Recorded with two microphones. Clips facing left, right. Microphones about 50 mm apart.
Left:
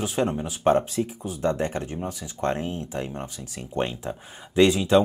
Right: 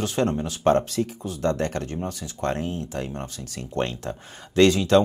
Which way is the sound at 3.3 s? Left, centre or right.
Centre.